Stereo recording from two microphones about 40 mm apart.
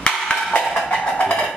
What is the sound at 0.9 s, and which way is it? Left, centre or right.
Music, left.